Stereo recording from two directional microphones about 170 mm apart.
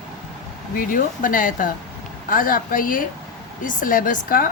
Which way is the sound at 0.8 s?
55° left (ahead or behind).